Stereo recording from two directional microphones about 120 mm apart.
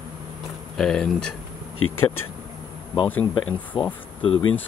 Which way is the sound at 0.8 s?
5° left (ahead or behind).